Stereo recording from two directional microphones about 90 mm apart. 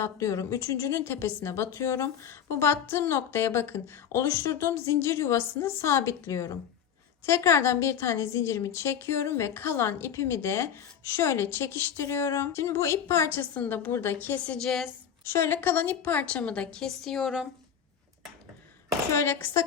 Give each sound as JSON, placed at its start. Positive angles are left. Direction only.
{"t": 0.0, "sound": "a woman's voice", "side_deg": 35}
{"t": 15.2, "sound": "a woman's voice", "side_deg": 25}
{"t": 19.1, "sound": "a woman's voice", "side_deg": 30}